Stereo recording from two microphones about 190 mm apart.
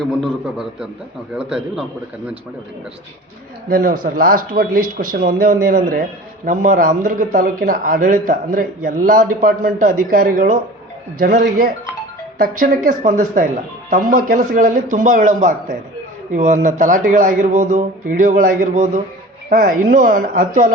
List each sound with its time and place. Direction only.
0.0 s a man's voice: centre (ahead or behind)
3.7 s speech: 45° right (ahead or behind)